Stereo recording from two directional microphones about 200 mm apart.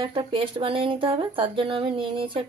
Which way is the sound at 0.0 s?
25° right (ahead or behind).